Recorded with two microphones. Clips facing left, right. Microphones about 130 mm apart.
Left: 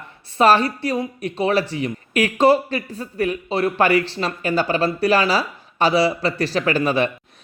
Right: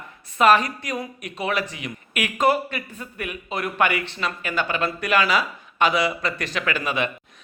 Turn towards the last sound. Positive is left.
turn(degrees=35)  # may be behind; listen again after turning